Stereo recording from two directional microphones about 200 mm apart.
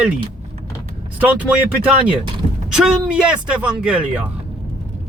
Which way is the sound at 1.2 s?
5° right (ahead or behind).